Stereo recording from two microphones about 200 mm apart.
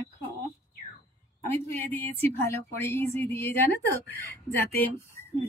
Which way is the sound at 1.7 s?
10° left (ahead or behind).